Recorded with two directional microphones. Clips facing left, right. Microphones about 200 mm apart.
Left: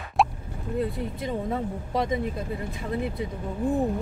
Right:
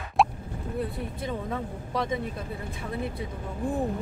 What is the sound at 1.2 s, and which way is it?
Speech, 20° left (ahead or behind).